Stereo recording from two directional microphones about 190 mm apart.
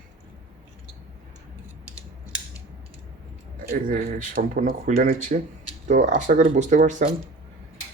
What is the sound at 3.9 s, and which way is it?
Speech, 45° right (ahead or behind).